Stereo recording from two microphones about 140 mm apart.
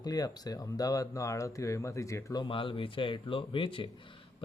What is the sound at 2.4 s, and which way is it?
Speech, 35° left (ahead or behind).